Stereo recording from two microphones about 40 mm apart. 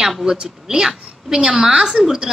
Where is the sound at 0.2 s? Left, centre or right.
Centre.